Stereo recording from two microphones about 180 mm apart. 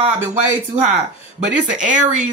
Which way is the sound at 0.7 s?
40° right (ahead or behind).